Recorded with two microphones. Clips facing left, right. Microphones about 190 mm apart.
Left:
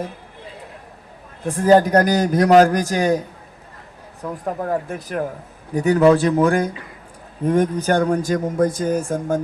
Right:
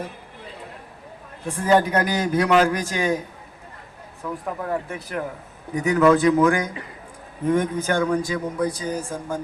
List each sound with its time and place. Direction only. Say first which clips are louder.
1.5 s a man's voice: left 5 dB; 40° left (ahead or behind)
4.2 s a man's voice: left 4 dB; 40° left (ahead or behind)